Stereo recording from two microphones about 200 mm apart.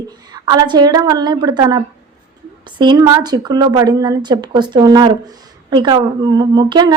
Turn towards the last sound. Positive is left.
turn(degrees=-20)  # may be behind; listen again after turning